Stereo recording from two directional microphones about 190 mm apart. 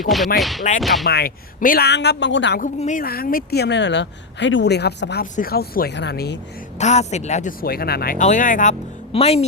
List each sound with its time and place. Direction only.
0.3 s speech: centre (ahead or behind)
1.0 s speech: 50° left (ahead or behind); by 2.6 s 70° left (ahead or behind)
2.6 s speech: 40° left (ahead or behind); by 5.2 s 60° left (ahead or behind)
5.2 s speech: 50° left (ahead or behind)
6.7 s speech: 35° left (ahead or behind)
9.1 s speech: 30° left (ahead or behind)